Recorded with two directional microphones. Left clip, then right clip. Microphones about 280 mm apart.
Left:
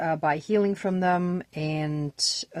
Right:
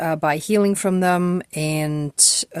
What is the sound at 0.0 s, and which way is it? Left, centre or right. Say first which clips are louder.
Speech: right 5 dB; right.